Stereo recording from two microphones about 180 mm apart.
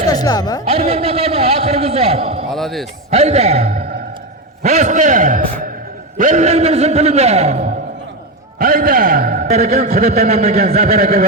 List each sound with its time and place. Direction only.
0.1 s speech: 20° left (ahead or behind)
0.6 s a man's voice: 35° right (ahead or behind)
2.5 s a man's voice: centre (ahead or behind)
3.1 s a man's voice: 35° right (ahead or behind)
8.5 s a man's voice: 50° right (ahead or behind)
9.5 s a man's voice: 35° right (ahead or behind)
11.0 s speech: 55° right (ahead or behind)